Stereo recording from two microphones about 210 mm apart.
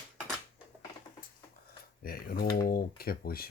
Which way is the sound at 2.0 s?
45° left (ahead or behind).